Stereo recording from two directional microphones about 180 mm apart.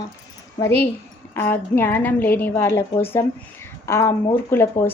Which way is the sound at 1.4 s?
10° left (ahead or behind).